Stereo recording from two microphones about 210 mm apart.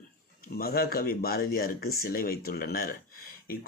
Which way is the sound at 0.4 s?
45° left (ahead or behind).